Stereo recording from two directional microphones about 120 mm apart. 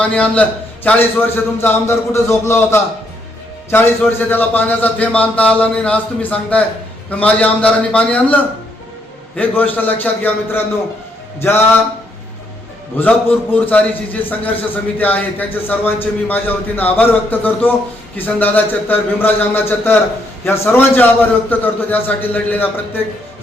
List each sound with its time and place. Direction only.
0.0 s a man's voice: 10° left (ahead or behind)
13.0 s a man's voice: 10° left (ahead or behind)